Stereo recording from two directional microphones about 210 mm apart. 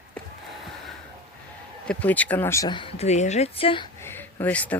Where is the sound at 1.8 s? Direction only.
5° left (ahead or behind); by 3.9 s 25° left (ahead or behind).